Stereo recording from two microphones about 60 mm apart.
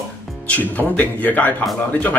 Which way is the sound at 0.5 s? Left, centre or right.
Left.